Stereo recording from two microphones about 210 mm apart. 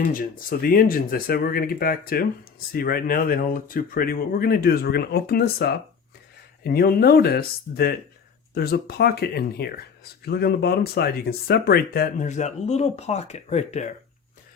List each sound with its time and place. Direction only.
0.1 s speech: 40° left (ahead or behind)